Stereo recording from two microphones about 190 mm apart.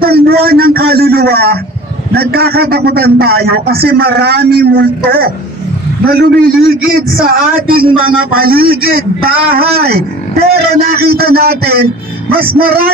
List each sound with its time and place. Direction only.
0.0 s a sound: 55° right (ahead or behind)
2.1 s speech: 55° right (ahead or behind)
7.2 s a man's voice: 50° right (ahead or behind)